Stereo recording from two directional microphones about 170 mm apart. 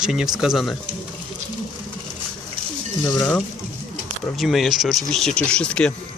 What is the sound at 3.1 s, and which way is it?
Speech, 10° left (ahead or behind).